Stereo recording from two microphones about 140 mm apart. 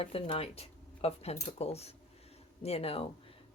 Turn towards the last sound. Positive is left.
turn(degrees=45)  # may be behind; listen again after turning